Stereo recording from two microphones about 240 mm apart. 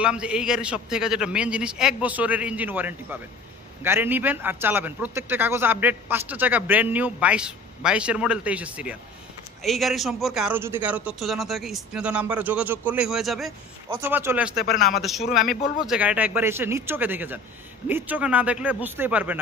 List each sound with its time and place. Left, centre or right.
0.0 s a man's voice: centre
14.6 s speech: left
15.0 s a man's voice: centre